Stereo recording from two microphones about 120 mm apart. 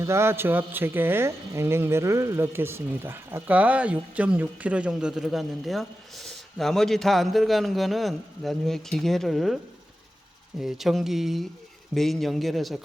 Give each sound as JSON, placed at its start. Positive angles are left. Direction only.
{"t": 0.0, "sound": "speech", "side_deg": -20}
{"t": 10.6, "sound": "speech", "side_deg": -5}